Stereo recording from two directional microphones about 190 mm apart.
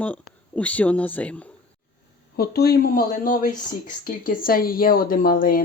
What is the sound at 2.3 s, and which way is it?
Speech, 55° left (ahead or behind).